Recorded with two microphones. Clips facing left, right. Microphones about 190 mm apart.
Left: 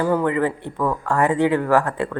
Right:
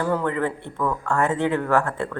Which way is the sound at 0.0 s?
10° left (ahead or behind).